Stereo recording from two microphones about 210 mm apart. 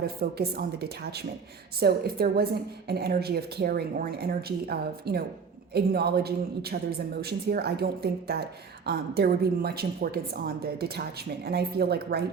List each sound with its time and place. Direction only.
0.2 s a woman's voice: 50° right (ahead or behind)